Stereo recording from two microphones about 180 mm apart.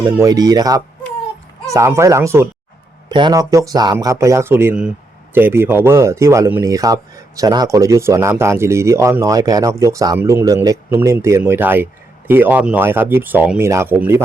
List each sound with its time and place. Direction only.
0.0 s speech: 15° right (ahead or behind)
3.1 s speech: 25° right (ahead or behind)